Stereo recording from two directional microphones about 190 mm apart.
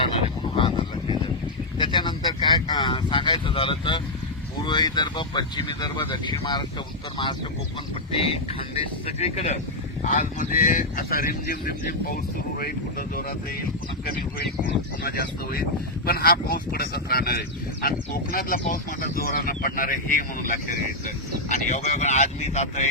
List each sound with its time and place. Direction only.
0.5 s a sound: 30° left (ahead or behind)
4.6 s speech: 25° left (ahead or behind)
8.1 s speech: 30° left (ahead or behind); by 13.2 s 50° left (ahead or behind)
15.0 s speech: 50° left (ahead or behind); by 22.9 s 35° left (ahead or behind)